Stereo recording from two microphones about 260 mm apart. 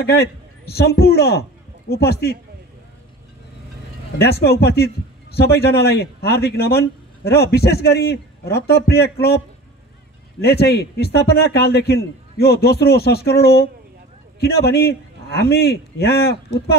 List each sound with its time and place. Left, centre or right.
0.0 s a man's voice: left
4.2 s a man's voice: left
10.4 s a man's voice: left